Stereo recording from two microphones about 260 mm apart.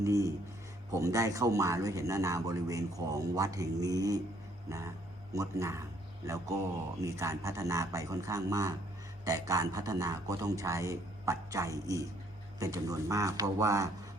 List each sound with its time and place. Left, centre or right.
0.0 s speech: centre